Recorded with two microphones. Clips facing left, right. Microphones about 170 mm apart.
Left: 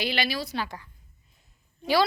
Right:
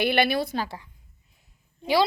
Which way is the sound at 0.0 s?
55° right (ahead or behind).